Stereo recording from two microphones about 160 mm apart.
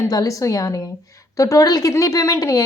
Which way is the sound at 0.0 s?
20° left (ahead or behind).